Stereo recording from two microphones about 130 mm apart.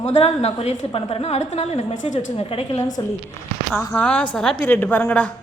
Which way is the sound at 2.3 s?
45° left (ahead or behind).